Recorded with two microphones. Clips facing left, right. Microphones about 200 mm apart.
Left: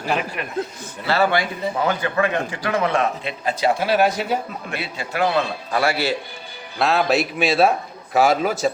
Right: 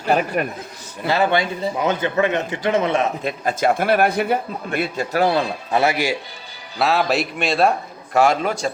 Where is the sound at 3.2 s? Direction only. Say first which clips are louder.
Right 2 dB; 45° right (ahead or behind).